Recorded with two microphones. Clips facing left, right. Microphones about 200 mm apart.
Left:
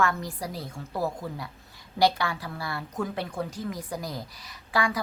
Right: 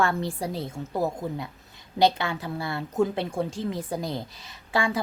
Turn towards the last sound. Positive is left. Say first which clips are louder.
# right 1 dB
turn(degrees=-25)  # may be behind; listen again after turning